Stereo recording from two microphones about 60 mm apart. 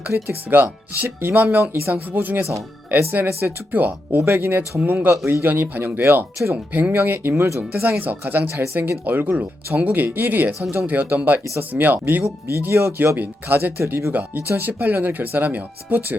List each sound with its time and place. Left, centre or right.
0.3 s speech: right
5.2 s speech: right
6.9 s speech: right
7.3 s speech: right
7.7 s speech: right
12.2 s speech: right
13.8 s speech: right
14.1 s speech: right